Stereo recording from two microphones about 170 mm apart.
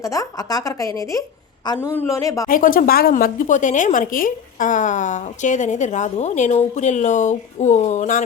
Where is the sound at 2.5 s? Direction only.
55° left (ahead or behind).